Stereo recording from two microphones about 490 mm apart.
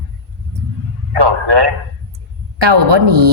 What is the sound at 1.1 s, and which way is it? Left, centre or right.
A man's voice, right.